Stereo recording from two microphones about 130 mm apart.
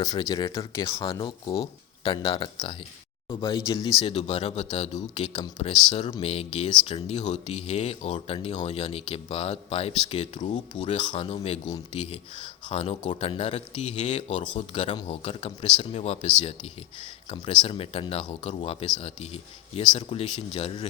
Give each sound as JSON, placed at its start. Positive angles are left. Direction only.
{"t": 0.0, "sound": "speech", "side_deg": 30}
{"t": 1.2, "sound": "speech", "side_deg": 35}
{"t": 4.0, "sound": "speech", "side_deg": 50}
{"t": 10.4, "sound": "speech", "side_deg": 65}
{"t": 10.9, "sound": "speech", "side_deg": 45}
{"t": 17.3, "sound": "speech", "side_deg": 40}